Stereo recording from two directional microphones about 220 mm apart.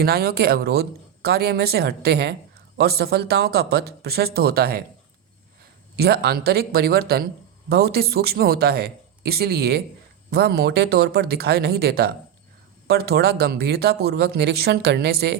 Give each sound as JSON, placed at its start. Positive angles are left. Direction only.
{"t": 0.0, "sound": "speech", "side_deg": -45}
{"t": 6.0, "sound": "speech", "side_deg": -45}